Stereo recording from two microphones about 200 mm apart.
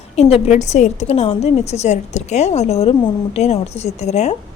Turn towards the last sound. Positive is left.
turn(degrees=35)  # may be behind; listen again after turning